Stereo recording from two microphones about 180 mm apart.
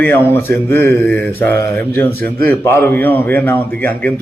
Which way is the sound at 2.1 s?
55° right (ahead or behind).